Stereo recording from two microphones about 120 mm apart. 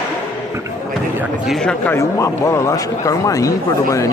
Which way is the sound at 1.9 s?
25° left (ahead or behind).